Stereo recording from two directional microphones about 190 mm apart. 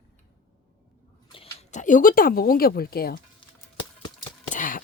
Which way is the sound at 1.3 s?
30° left (ahead or behind).